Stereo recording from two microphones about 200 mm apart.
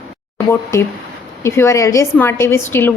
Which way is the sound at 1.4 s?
15° left (ahead or behind).